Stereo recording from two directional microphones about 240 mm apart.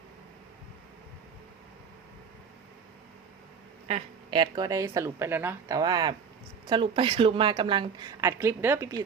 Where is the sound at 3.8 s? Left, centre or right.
Right.